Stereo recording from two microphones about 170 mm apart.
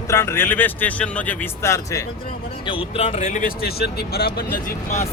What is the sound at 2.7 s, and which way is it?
Speech, 35° left (ahead or behind).